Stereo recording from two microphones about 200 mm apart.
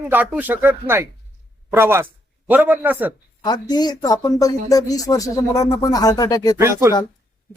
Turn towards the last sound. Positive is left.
turn(degrees=-15)  # may be behind; listen again after turning